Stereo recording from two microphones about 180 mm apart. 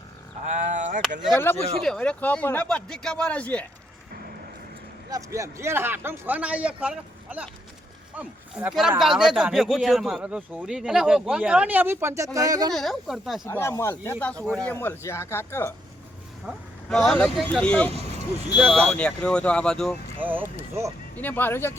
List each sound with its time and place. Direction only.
0.5 s a sound: 40° right (ahead or behind)
1.3 s speech: 10° left (ahead or behind)
5.1 s a man's voice: 15° right (ahead or behind)
12.7 s speech: centre (ahead or behind)
13.4 s speech: 15° left (ahead or behind)
16.5 s speech: 5° left (ahead or behind)
18.4 s a man's voice: 10° right (ahead or behind)
18.7 s speech: 5° left (ahead or behind)
20.1 s a man's voice: 10° right (ahead or behind)
21.2 s speech: 10° left (ahead or behind)